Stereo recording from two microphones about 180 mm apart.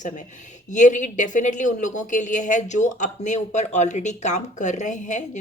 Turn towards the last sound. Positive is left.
turn(degrees=45)  # may be behind; listen again after turning